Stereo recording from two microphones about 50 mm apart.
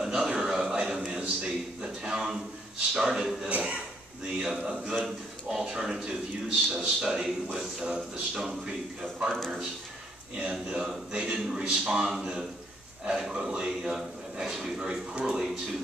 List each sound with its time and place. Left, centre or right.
0.0 s a sound: centre
1.2 s a sound: centre
2.9 s a man's voice: centre
3.4 s speech: right
4.4 s a man's voice: centre
10.4 s a man's voice: centre